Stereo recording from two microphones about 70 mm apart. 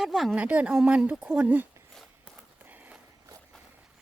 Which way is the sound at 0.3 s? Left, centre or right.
Centre.